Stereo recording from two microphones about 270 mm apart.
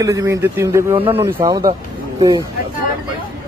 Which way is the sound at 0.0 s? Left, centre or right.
Centre.